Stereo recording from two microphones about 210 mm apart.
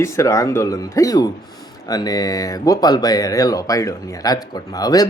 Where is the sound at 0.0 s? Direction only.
15° left (ahead or behind).